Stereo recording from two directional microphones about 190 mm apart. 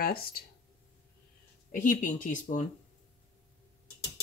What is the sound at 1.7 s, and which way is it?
Speech, 45° left (ahead or behind).